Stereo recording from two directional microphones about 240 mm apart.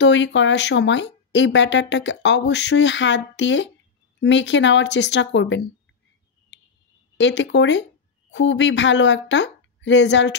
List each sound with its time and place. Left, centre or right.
0.0 s speech: left
7.2 s speech: left